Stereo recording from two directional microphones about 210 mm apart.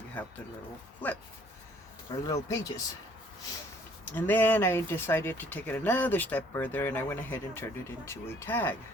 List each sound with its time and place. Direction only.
0.2 s speech: 5° left (ahead or behind)
2.2 s speech: 15° left (ahead or behind)
4.1 s speech: 10° left (ahead or behind)